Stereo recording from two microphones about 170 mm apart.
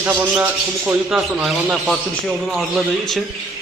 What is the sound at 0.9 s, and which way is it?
A man's voice, 5° right (ahead or behind).